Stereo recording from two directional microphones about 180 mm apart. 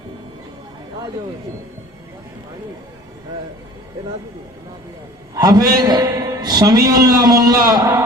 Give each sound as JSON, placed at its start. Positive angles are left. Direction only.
{"t": 5.3, "sound": "a man's voice", "side_deg": -20}